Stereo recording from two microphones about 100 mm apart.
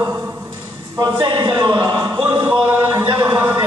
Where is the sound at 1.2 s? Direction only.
55° right (ahead or behind).